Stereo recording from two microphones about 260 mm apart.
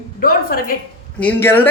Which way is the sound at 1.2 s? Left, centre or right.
Centre.